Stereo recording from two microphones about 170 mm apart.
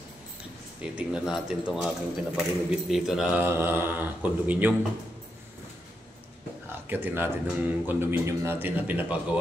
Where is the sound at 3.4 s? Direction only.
15° right (ahead or behind).